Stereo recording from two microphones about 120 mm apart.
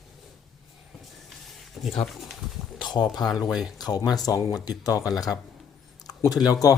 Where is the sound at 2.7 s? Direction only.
35° left (ahead or behind).